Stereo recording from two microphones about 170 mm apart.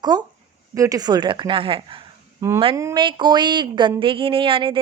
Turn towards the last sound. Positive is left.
turn(degrees=-30)  # may be behind; listen again after turning